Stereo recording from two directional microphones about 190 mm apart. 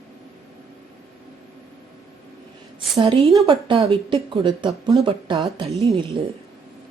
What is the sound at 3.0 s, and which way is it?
Speech, 30° right (ahead or behind).